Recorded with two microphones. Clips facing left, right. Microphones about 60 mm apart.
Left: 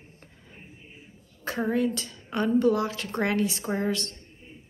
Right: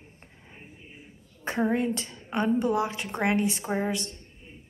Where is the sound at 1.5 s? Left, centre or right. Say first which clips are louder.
Even; right.